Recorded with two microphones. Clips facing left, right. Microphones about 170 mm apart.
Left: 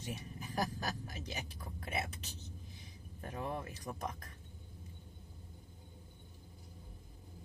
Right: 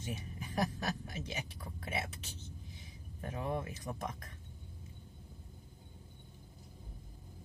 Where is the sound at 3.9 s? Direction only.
5° left (ahead or behind).